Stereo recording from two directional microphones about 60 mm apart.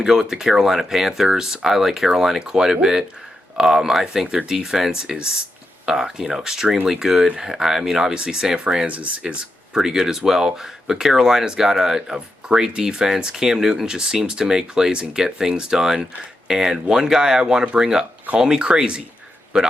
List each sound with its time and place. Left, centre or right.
0.0 s speech: centre
9.7 s speech: centre